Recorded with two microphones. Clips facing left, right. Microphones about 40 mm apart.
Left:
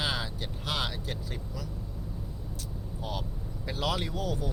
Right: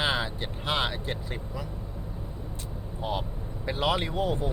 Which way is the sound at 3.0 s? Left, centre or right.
Right.